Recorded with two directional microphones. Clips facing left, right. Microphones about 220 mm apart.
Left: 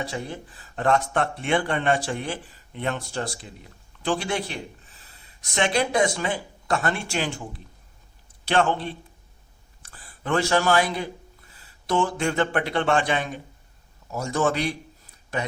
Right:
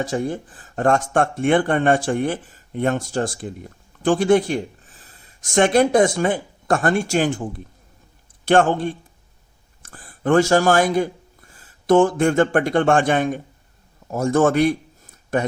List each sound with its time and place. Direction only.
0.0 s a man's voice: 45° right (ahead or behind)